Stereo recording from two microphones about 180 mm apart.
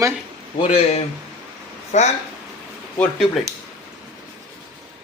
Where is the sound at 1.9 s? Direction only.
40° left (ahead or behind).